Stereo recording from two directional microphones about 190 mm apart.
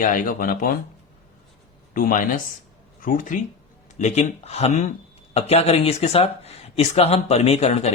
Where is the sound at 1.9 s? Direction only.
45° left (ahead or behind).